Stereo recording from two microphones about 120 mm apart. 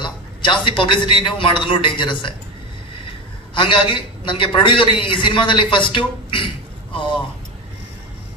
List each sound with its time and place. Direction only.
0.0 s a man's voice: 40° left (ahead or behind)
3.5 s a man's voice: 45° left (ahead or behind)